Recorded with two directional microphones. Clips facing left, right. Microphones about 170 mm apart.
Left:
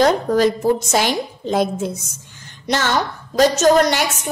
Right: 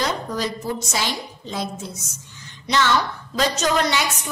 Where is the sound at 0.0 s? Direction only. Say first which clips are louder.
Left 10 dB; 55° left (ahead or behind).